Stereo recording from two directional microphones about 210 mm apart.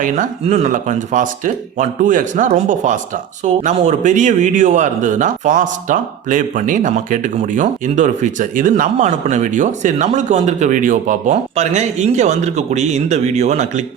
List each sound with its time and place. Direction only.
0.0 s a man's voice: 35° right (ahead or behind)